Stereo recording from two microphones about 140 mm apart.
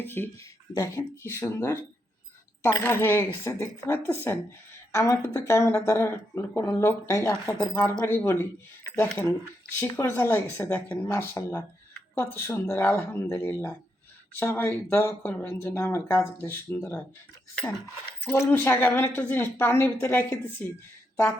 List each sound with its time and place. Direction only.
0.0 s speech: 15° left (ahead or behind)
9.8 s speech: 15° left (ahead or behind)
17.5 s speech: centre (ahead or behind)
18.3 s speech: 15° left (ahead or behind)